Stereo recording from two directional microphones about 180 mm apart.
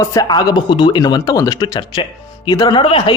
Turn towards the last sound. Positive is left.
turn(degrees=30)  # may be behind; listen again after turning